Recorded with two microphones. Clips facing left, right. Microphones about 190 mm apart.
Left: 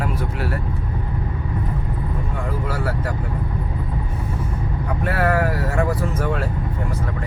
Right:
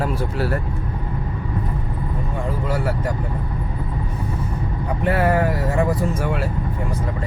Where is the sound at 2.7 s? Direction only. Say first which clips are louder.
Right 2 dB; 20° right (ahead or behind).